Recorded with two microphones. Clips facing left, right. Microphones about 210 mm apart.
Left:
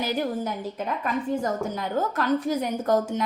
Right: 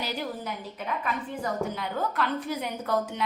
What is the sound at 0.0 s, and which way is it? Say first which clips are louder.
A woman's voice: left 6 dB; 50° left (ahead or behind).